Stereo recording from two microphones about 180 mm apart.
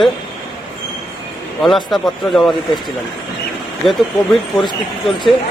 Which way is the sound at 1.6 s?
Centre (ahead or behind).